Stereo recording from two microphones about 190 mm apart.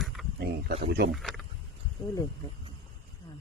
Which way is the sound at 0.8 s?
55° right (ahead or behind).